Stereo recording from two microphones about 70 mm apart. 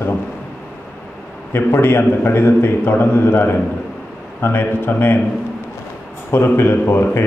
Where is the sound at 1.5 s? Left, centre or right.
Left.